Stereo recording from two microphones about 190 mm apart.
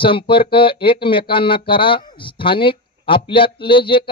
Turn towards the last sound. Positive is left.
turn(degrees=25)  # may be behind; listen again after turning